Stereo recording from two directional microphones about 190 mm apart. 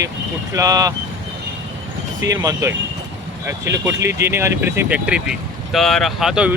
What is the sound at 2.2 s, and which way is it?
Speech, 15° right (ahead or behind).